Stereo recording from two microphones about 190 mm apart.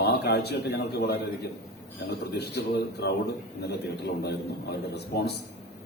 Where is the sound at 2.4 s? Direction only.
60° left (ahead or behind).